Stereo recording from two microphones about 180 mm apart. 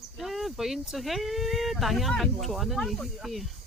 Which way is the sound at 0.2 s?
Centre (ahead or behind).